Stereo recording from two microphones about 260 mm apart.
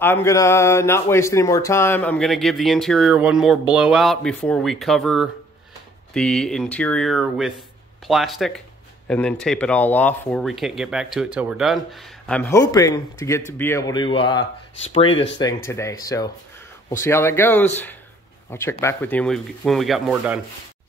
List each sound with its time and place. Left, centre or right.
0.0 s speech: centre